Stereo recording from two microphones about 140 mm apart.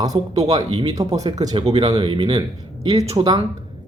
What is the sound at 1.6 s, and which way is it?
Speech, 45° right (ahead or behind).